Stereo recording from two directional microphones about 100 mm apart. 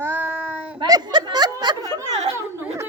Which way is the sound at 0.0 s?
20° right (ahead or behind).